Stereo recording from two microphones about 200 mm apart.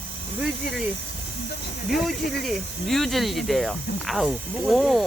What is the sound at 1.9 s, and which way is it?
Speech, centre (ahead or behind).